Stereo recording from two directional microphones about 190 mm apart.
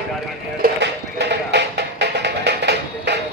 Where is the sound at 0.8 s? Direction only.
65° right (ahead or behind).